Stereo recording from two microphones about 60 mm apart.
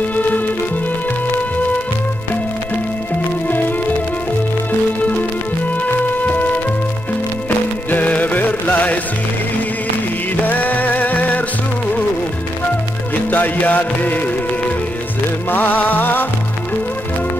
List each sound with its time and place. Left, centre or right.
3.4 s music: left
6.2 s music: left
10.4 s music: left
13.1 s music: left
15.5 s music: left